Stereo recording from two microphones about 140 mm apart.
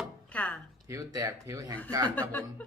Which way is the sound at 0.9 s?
25° right (ahead or behind).